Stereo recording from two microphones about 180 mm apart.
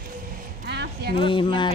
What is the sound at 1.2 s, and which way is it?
Speech, 25° left (ahead or behind).